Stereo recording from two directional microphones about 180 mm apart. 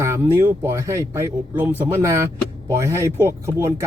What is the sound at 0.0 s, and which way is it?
Speech, 15° right (ahead or behind).